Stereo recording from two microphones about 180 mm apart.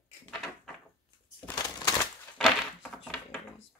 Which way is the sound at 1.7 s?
15° left (ahead or behind).